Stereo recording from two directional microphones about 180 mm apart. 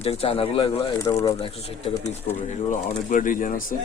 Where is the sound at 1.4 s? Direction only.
30° left (ahead or behind).